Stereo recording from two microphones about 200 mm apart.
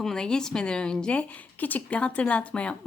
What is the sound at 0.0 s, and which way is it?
Speech, 5° left (ahead or behind).